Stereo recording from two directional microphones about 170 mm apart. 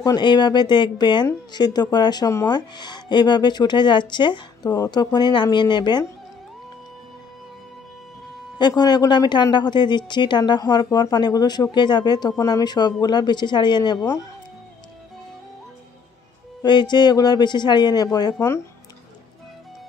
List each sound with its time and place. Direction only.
0.0 s speech: 25° left (ahead or behind)
8.5 s speech: 25° left (ahead or behind)
16.6 s speech: 25° left (ahead or behind)